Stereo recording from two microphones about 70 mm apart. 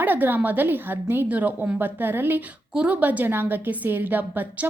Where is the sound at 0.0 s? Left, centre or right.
Right.